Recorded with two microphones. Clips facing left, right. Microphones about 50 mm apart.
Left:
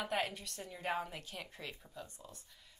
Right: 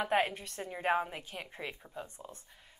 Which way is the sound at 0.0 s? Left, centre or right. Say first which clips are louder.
Right 7 dB; right.